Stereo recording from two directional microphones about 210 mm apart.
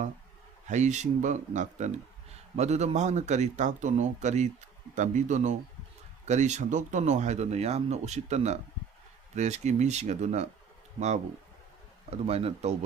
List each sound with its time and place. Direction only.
0.7 s speech: 35° right (ahead or behind)
12.1 s speech: 30° right (ahead or behind)